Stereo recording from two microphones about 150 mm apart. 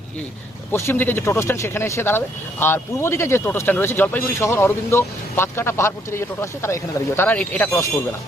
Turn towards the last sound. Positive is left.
turn(degrees=15)  # may be behind; listen again after turning